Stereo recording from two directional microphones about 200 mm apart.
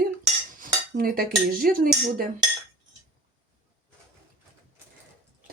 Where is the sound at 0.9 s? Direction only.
45° right (ahead or behind).